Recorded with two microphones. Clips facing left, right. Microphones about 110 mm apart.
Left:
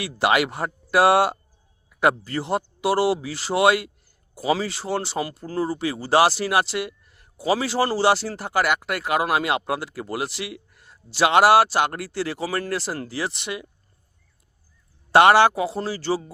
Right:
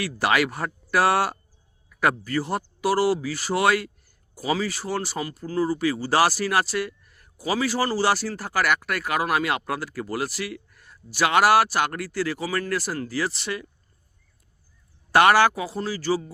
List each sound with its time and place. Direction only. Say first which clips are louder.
0.0 s speech: left 2 dB; 25° left (ahead or behind)
15.1 s speech: left 3 dB; 25° left (ahead or behind)